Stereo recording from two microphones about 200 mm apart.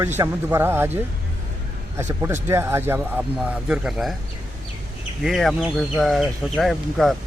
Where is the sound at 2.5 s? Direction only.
15° right (ahead or behind).